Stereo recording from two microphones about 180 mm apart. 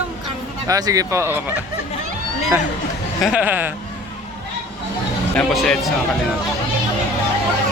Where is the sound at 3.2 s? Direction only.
10° right (ahead or behind).